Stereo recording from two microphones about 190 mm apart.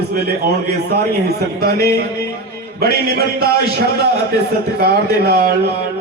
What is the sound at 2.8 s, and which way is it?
Speech, 55° right (ahead or behind).